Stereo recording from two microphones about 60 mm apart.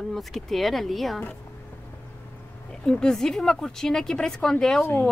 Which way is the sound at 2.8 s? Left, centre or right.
Centre.